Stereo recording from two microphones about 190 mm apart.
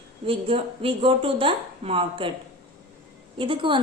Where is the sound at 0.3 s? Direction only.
30° right (ahead or behind).